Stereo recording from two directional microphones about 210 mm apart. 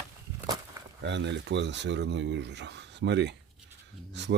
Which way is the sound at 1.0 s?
55° right (ahead or behind).